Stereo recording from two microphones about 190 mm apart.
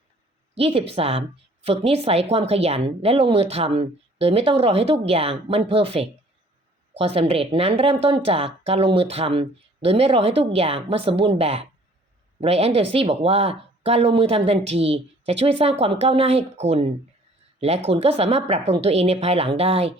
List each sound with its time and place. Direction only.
0.5 s speech: 30° right (ahead or behind)